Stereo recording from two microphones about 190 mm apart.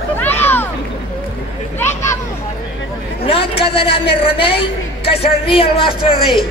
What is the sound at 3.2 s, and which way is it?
A woman's voice, 30° left (ahead or behind).